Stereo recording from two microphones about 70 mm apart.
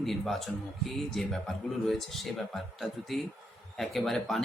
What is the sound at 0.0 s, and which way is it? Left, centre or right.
Speech, centre.